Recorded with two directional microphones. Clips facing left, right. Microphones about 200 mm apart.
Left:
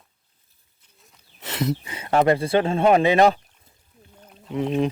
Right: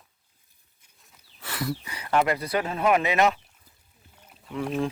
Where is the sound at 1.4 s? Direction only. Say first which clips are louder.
Left 6 dB; 20° left (ahead or behind).